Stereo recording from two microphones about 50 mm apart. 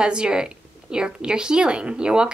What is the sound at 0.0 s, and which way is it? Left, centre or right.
A woman's voice, centre.